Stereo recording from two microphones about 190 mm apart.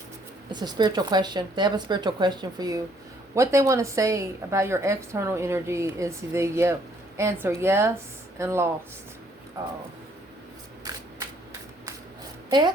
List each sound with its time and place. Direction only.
0.5 s a woman's voice: 20° right (ahead or behind)
12.5 s a woman's voice: 25° right (ahead or behind)